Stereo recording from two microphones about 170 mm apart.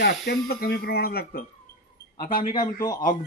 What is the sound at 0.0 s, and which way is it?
Speech, 65° left (ahead or behind).